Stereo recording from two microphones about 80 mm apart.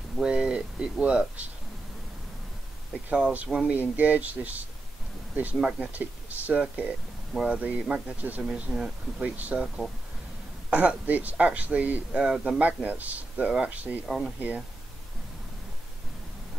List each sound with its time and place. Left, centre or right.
0.2 s speech: centre
3.1 s speech: centre
8.5 s speech: centre
9.4 s speech: centre
10.7 s speech: centre
14.0 s speech: centre